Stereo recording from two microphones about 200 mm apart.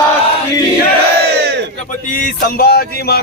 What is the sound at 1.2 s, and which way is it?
Battle cry, 55° right (ahead or behind).